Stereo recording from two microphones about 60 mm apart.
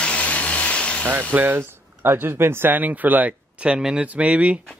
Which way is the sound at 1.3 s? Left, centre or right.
Right.